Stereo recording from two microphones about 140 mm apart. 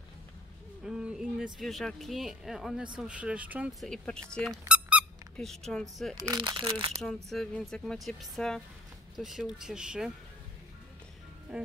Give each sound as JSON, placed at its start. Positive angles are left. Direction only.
{"t": 0.8, "sound": "speech", "side_deg": -5}
{"t": 3.8, "sound": "speech", "side_deg": 5}
{"t": 4.6, "sound": "squeak", "side_deg": -10}
{"t": 5.4, "sound": "speech", "side_deg": 5}
{"t": 6.1, "sound": "speech", "side_deg": -30}
{"t": 7.2, "sound": "speech", "side_deg": 5}
{"t": 11.5, "sound": "speech", "side_deg": -5}